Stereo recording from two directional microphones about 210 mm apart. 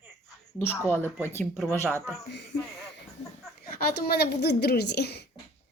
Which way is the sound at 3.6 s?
45° left (ahead or behind).